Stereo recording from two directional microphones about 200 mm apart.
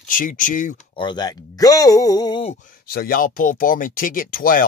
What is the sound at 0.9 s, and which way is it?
Speech, 20° left (ahead or behind).